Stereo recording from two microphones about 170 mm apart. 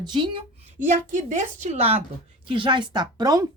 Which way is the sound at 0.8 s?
45° right (ahead or behind).